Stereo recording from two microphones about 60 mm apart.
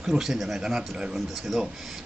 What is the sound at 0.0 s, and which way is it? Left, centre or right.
A man's voice, centre.